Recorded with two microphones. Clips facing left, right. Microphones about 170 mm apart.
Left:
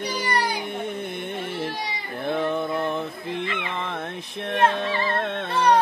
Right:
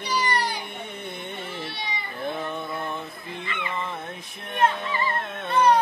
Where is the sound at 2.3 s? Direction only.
70° left (ahead or behind).